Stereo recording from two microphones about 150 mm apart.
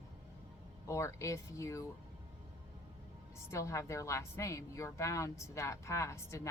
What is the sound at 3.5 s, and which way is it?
Speech, 20° left (ahead or behind).